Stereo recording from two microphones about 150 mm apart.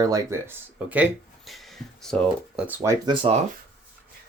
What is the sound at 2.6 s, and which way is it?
Speech, 10° right (ahead or behind).